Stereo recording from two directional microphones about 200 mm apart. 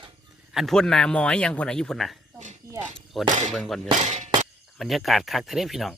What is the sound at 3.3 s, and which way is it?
Speech, 40° right (ahead or behind).